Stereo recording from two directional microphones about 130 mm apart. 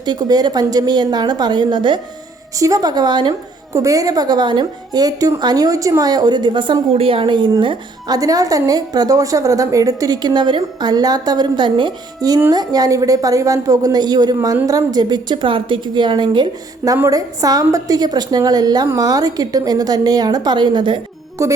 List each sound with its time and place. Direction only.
0.0 s a woman's voice: 30° right (ahead or behind)
3.7 s a woman's voice: 25° right (ahead or behind)
21.4 s a woman's voice: 20° right (ahead or behind)